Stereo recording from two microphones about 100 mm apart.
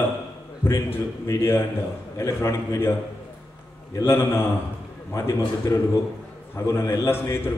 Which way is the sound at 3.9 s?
25° left (ahead or behind).